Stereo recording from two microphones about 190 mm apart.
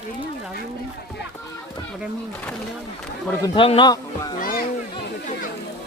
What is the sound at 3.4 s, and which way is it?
Speech, 25° left (ahead or behind).